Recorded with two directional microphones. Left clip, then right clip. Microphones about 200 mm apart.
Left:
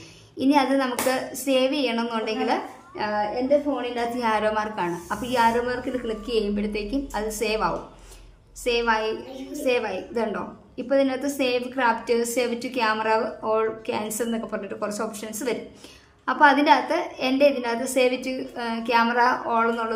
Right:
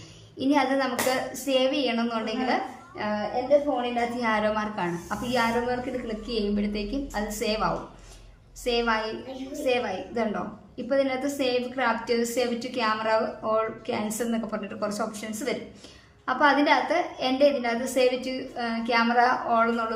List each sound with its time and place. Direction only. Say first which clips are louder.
0.3 s a woman's voice: left 3 dB; 25° left (ahead or behind)
3.8 s a woman's voice: left 1 dB; 30° left (ahead or behind)